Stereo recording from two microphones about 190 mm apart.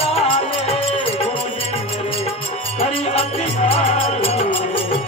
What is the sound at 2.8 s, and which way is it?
Music, 30° left (ahead or behind).